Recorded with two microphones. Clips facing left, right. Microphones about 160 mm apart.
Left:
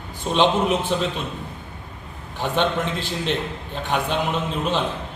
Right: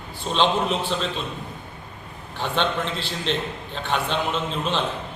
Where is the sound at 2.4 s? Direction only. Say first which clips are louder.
Left 2 dB; 15° left (ahead or behind).